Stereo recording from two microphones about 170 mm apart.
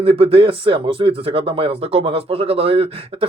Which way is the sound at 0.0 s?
35° right (ahead or behind).